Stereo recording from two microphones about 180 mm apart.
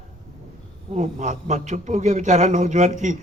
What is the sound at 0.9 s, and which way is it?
A man's voice, 40° right (ahead or behind).